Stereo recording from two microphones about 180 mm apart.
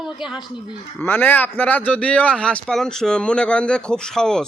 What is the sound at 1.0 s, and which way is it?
A man's voice, 10° left (ahead or behind).